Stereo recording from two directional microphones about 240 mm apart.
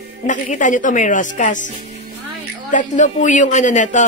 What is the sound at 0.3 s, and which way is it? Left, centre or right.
A woman's voice, left.